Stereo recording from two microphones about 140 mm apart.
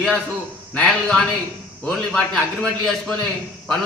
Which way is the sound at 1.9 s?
5° left (ahead or behind).